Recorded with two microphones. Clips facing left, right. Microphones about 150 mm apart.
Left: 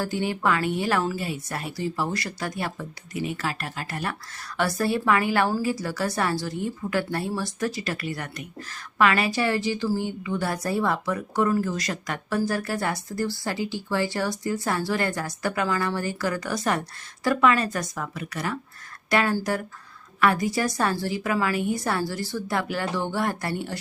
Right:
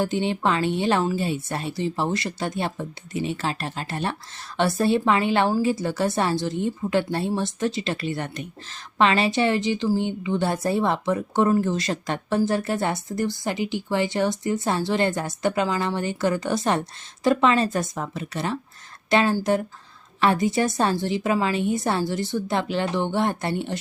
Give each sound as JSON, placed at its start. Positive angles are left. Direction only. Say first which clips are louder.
{"t": 0.0, "sound": "speech", "louder": "right 3 dB", "side_deg": -20}